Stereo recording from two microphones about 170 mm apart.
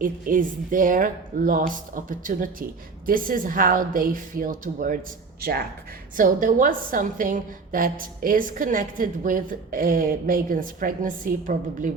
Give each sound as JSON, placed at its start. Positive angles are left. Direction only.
{"t": 0.0, "sound": "a woman's voice", "side_deg": -50}
{"t": 6.1, "sound": "a woman's voice", "side_deg": -50}